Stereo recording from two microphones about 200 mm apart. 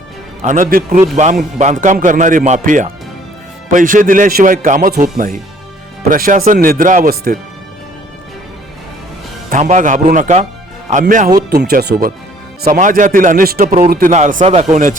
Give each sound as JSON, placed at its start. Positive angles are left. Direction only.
{"t": 0.4, "sound": "a man's voice", "side_deg": -40}
{"t": 9.5, "sound": "a man's voice", "side_deg": -40}
{"t": 11.5, "sound": "speech", "side_deg": -55}
{"t": 12.7, "sound": "a man's voice", "side_deg": -40}